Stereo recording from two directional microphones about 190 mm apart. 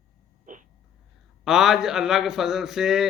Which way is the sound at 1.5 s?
Centre (ahead or behind).